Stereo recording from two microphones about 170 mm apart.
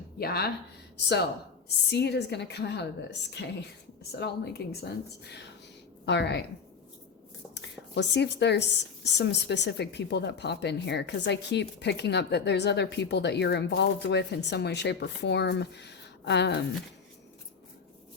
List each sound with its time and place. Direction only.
0.2 s speech: 65° left (ahead or behind)
1.6 s speech: 80° left
4.1 s speech: 70° left (ahead or behind)
6.1 s speech: 90° left
7.5 s speech: 90° left